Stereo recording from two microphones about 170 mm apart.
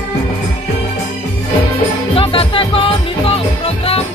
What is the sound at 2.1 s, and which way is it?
Music, 35° left (ahead or behind).